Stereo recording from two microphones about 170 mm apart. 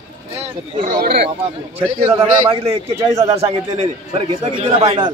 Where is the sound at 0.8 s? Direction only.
55° right (ahead or behind).